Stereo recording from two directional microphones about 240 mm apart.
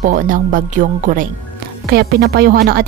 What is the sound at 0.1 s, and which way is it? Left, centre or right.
Speech, right.